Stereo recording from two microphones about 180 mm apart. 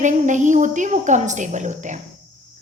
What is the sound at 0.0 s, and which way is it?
A woman's voice, 45° right (ahead or behind).